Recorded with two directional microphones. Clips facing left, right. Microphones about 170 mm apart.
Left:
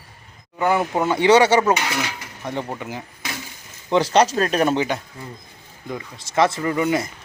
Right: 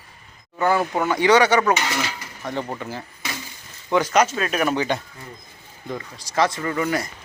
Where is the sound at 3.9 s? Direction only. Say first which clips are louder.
Left 2 dB; 30° left (ahead or behind).